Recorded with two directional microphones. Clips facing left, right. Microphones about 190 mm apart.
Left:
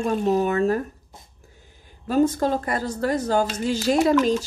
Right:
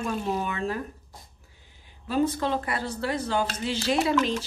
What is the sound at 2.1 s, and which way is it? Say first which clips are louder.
Speech: left 5 dB; 45° left (ahead or behind).